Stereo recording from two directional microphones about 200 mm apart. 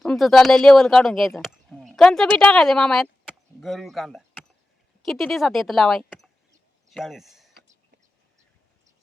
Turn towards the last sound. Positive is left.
turn(degrees=0)  # may be behind; listen again after turning